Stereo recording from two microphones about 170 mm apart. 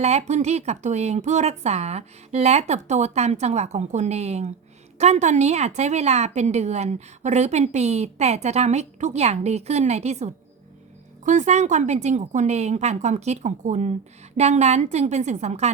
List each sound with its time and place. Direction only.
0.0 s speech: 40° right (ahead or behind)